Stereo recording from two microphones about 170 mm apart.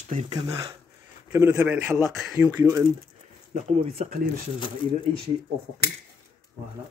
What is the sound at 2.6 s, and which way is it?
Speech, 20° right (ahead or behind).